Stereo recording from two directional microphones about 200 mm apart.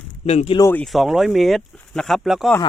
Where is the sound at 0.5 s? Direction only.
15° left (ahead or behind).